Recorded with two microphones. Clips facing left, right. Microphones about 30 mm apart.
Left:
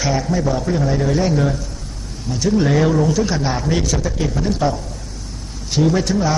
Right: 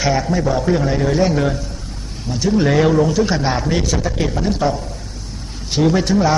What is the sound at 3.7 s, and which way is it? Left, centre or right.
A man's voice, centre.